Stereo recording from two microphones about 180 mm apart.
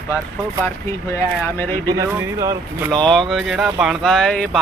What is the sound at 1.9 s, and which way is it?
Speech, 20° right (ahead or behind).